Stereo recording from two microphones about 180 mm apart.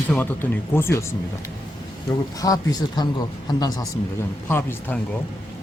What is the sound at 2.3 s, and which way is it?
Speech, 20° left (ahead or behind).